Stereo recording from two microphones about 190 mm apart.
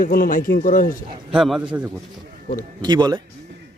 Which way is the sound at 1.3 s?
Centre (ahead or behind).